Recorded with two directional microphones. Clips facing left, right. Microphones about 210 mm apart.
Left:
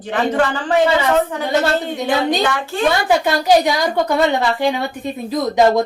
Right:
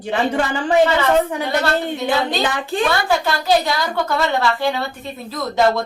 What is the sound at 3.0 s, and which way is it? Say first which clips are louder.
A woman's voice: left 3 dB; 15° left (ahead or behind).